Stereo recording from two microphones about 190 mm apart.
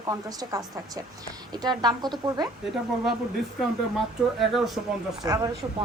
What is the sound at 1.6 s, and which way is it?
Speech, 20° right (ahead or behind).